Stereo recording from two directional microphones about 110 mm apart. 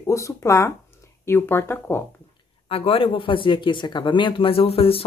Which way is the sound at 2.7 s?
60° left (ahead or behind).